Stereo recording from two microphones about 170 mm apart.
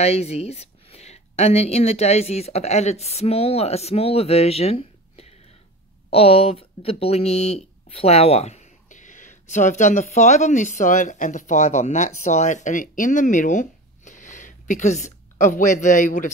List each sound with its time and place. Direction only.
0.0 s a woman's voice: 40° left (ahead or behind)